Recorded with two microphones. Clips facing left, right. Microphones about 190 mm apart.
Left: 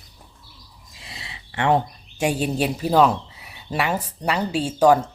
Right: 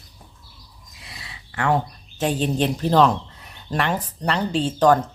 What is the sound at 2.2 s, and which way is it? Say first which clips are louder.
A woman's voice: even; 10° left (ahead or behind).